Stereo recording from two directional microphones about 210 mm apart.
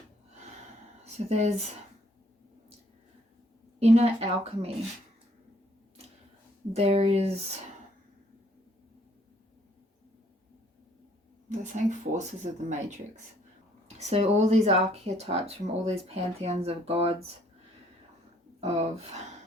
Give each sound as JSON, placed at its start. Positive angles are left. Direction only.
{"t": 1.0, "sound": "a woman's voice", "side_deg": -30}
{"t": 3.8, "sound": "speech", "side_deg": -30}
{"t": 6.7, "sound": "speech", "side_deg": -30}
{"t": 11.4, "sound": "speech", "side_deg": -35}
{"t": 14.0, "sound": "speech", "side_deg": -30}
{"t": 18.6, "sound": "speech", "side_deg": -30}